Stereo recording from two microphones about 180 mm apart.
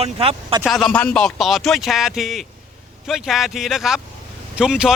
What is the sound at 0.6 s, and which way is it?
Speech, centre (ahead or behind).